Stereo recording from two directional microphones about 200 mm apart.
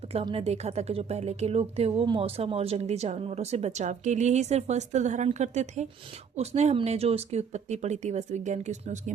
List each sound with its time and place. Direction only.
0.1 s a woman's voice: 30° right (ahead or behind)